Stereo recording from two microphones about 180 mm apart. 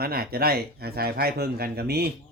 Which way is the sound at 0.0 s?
60° right (ahead or behind).